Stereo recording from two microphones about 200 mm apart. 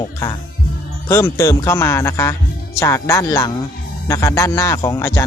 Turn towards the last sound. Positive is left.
turn(degrees=10)  # may be behind; listen again after turning